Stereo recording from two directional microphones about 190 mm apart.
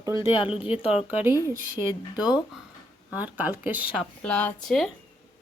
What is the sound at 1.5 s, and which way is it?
Speech, 45° right (ahead or behind).